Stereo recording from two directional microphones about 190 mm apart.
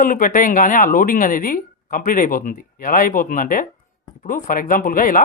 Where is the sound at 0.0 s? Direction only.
45° left (ahead or behind).